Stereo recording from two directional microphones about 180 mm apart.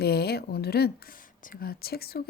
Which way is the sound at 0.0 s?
60° left (ahead or behind).